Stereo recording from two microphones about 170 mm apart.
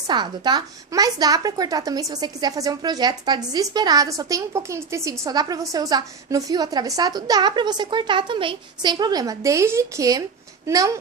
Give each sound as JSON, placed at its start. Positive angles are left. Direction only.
{"t": 0.1, "sound": "a woman's voice", "side_deg": -25}